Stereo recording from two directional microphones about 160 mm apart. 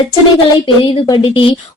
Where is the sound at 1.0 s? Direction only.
30° left (ahead or behind).